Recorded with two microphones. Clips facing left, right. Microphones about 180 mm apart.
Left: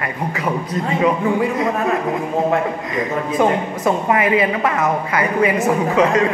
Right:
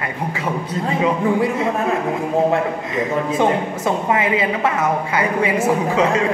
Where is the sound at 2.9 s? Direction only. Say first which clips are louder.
Right 2 dB; 25° right (ahead or behind).